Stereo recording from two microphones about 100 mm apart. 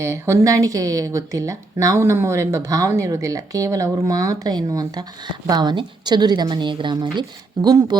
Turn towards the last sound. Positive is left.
turn(degrees=-40)  # may be behind; listen again after turning